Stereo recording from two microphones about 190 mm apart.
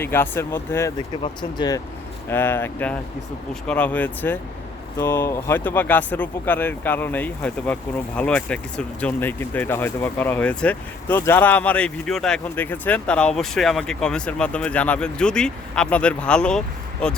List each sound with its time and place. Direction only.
0.0 s speech: 10° left (ahead or behind)
1.2 s speech: 25° left (ahead or behind)
2.3 s speech: 10° left (ahead or behind)